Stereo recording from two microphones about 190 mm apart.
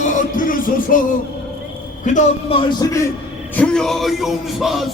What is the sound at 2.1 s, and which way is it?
Speech, 30° left (ahead or behind).